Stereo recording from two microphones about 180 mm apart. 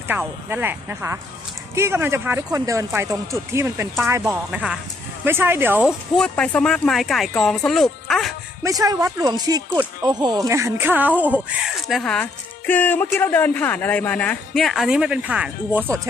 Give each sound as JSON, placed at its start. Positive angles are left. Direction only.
{"t": 0.1, "sound": "speech", "side_deg": -10}
{"t": 6.1, "sound": "speech", "side_deg": 5}
{"t": 8.6, "sound": "speech", "side_deg": -20}